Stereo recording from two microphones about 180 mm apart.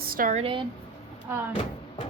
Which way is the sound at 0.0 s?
50° right (ahead or behind).